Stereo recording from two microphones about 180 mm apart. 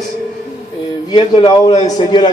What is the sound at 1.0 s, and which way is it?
A man's voice, 25° left (ahead or behind).